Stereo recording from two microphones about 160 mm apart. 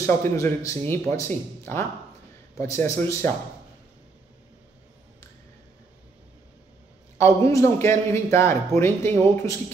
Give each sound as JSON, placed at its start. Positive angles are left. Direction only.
{"t": 0.0, "sound": "a man's voice", "side_deg": 20}
{"t": 7.2, "sound": "a man's voice", "side_deg": 15}